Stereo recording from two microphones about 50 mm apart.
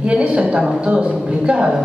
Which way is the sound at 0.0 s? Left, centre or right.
Right.